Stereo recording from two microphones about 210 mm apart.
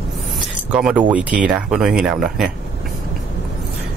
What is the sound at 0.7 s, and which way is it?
Speech, 5° right (ahead or behind).